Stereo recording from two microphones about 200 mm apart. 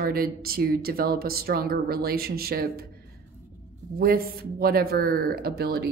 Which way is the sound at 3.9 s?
50° right (ahead or behind).